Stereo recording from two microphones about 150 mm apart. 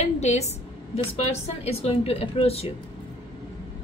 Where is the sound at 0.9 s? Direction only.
40° left (ahead or behind).